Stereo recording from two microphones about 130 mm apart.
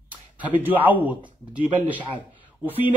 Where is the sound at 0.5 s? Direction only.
15° right (ahead or behind).